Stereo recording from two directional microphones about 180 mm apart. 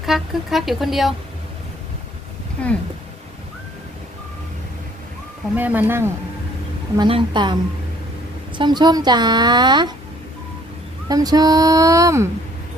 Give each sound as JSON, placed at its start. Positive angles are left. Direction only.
{"t": 0.0, "sound": "speech", "side_deg": 0}
{"t": 5.5, "sound": "speech", "side_deg": -10}
{"t": 6.9, "sound": "speech", "side_deg": -25}
{"t": 8.5, "sound": "speech", "side_deg": -25}
{"t": 11.1, "sound": "speech", "side_deg": -20}